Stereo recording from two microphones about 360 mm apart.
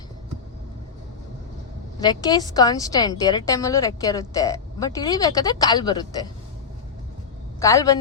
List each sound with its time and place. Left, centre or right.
2.0 s a woman's voice: centre
7.6 s a woman's voice: centre